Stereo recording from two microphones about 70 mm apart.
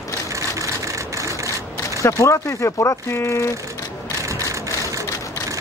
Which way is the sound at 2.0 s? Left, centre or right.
Left.